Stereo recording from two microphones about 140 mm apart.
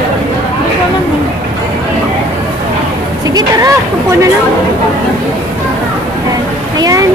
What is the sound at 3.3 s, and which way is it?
Speech, 25° right (ahead or behind).